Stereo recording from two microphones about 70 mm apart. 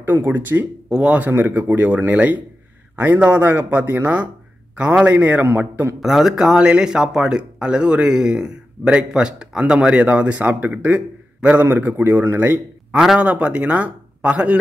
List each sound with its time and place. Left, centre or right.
0.0 s speech: right
0.8 s speech: centre
1.3 s speech: right
5.9 s speech: centre; by 12.5 s right
12.9 s a man's voice: centre
13.2 s speech: centre